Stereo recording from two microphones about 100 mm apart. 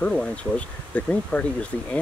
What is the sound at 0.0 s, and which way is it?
Speech, 10° left (ahead or behind).